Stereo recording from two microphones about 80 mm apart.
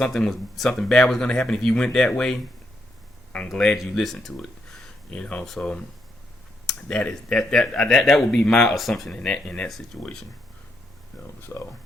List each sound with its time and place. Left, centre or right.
0.0 s speech: centre
3.5 s speech: centre
6.8 s speech: centre
11.3 s speech: left